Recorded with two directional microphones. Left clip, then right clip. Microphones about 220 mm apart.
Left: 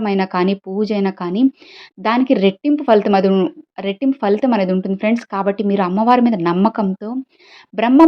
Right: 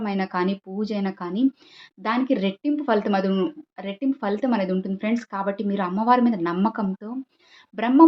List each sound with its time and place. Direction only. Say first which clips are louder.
0.0 s speech: left 8 dB; 40° left (ahead or behind)